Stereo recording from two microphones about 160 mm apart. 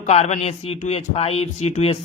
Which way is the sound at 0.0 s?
45° left (ahead or behind).